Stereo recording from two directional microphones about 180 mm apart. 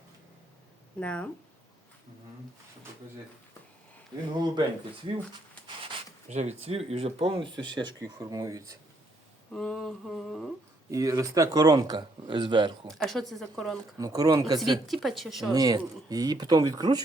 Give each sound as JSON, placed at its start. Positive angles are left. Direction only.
{"t": 0.9, "sound": "speech", "side_deg": 5}
{"t": 4.4, "sound": "speech", "side_deg": -25}
{"t": 6.2, "sound": "speech", "side_deg": -40}
{"t": 9.5, "sound": "a sound", "side_deg": 5}
{"t": 10.9, "sound": "speech", "side_deg": -20}
{"t": 12.9, "sound": "a sound", "side_deg": 0}
{"t": 13.7, "sound": "speech", "side_deg": -20}
{"t": 14.8, "sound": "a sound", "side_deg": 0}
{"t": 15.5, "sound": "speech", "side_deg": -20}